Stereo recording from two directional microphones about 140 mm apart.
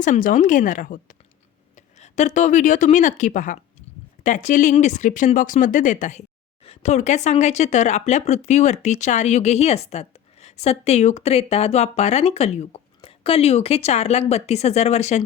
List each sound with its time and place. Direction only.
0.0 s speech: 70° left (ahead or behind)
1.7 s a woman's voice: 55° left (ahead or behind)